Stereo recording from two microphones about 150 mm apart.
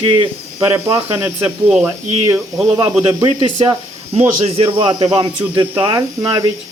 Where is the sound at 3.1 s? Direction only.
30° right (ahead or behind).